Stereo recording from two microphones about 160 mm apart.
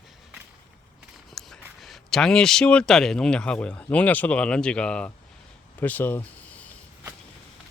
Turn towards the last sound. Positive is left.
turn(degrees=10)  # may be behind; listen again after turning